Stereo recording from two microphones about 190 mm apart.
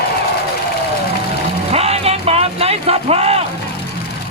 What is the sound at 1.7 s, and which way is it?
Music, 30° right (ahead or behind).